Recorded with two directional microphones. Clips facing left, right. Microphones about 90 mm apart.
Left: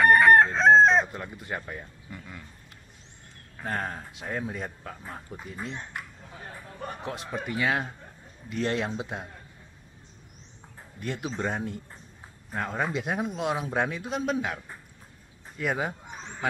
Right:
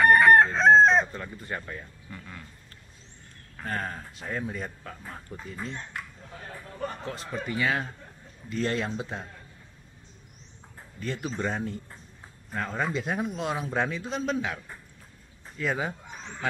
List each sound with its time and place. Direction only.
0.0 s chicken: centre (ahead or behind)
1.0 s speech: 15° left (ahead or behind)
2.0 s speech: 10° left (ahead or behind)
3.6 s speech: 20° left (ahead or behind)
5.4 s speech: 10° left (ahead or behind)
6.9 s speech: 15° left (ahead or behind)
11.0 s speech: 15° left (ahead or behind)
15.6 s speech: 15° left (ahead or behind)